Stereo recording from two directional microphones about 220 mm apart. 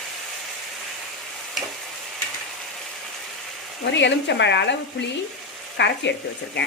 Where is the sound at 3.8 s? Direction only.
55° left (ahead or behind).